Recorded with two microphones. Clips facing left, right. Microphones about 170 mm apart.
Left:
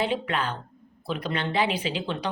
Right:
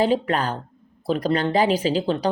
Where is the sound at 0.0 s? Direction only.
40° right (ahead or behind).